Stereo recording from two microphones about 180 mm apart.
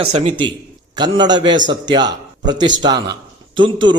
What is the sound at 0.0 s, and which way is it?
A man's voice, 35° right (ahead or behind).